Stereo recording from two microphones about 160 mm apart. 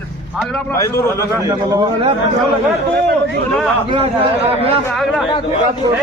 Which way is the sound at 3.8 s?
35° right (ahead or behind).